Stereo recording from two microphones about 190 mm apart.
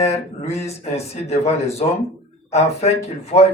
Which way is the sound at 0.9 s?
35° left (ahead or behind).